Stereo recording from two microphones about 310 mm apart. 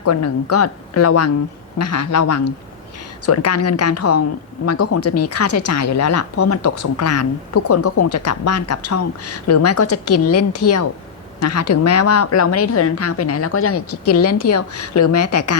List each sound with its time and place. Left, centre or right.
0.0 s speech: left
14.5 s speech: left